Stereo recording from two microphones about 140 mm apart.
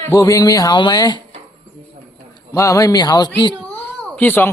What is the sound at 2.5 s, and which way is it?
Speech, 25° left (ahead or behind).